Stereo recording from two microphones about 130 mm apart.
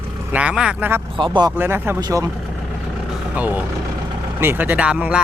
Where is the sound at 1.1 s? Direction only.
40° right (ahead or behind).